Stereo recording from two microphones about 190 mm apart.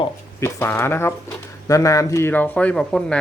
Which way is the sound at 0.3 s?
10° left (ahead or behind).